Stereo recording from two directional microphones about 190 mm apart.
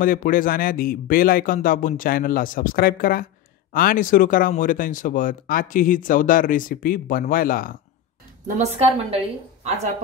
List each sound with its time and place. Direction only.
0.0 s speech: 45° left (ahead or behind)
8.5 s a woman's voice: 35° right (ahead or behind)